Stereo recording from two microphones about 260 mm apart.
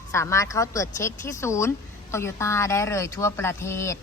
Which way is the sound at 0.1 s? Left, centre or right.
Centre.